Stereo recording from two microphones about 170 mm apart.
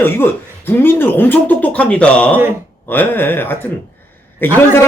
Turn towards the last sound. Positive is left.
turn(degrees=10)  # may be behind; listen again after turning